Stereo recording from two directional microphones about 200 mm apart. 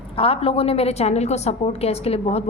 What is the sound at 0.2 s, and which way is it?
A woman's voice, 30° left (ahead or behind).